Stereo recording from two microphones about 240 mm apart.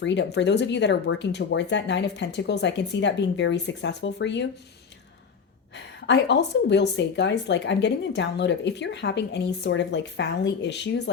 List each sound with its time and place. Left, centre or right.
0.0 s a woman's voice: left
5.7 s a woman's voice: left